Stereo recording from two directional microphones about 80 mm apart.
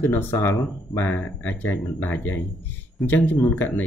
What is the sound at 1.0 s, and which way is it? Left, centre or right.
Speech, left.